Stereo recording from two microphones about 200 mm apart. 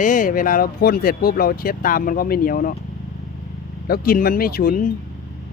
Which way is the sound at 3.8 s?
50° left (ahead or behind).